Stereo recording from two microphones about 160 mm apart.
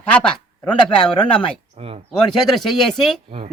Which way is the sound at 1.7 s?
35° right (ahead or behind).